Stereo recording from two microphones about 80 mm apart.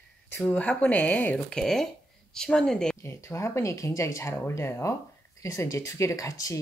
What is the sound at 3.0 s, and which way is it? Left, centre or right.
Speech, left.